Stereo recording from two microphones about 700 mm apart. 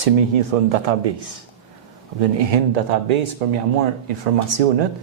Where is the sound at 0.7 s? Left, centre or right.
Right.